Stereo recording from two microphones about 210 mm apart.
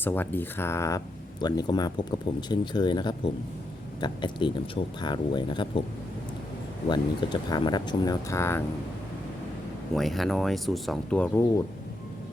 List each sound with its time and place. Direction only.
0.0 s speech: 10° left (ahead or behind)
6.8 s speech: 20° left (ahead or behind)
9.9 s speech: centre (ahead or behind)